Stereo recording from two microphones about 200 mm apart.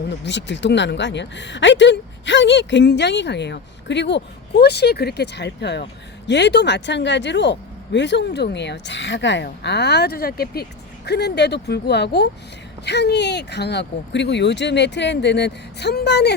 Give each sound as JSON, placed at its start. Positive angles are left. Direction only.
{"t": 0.3, "sound": "speech", "side_deg": 60}